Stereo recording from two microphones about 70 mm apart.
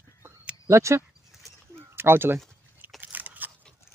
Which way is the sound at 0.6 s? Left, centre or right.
Right.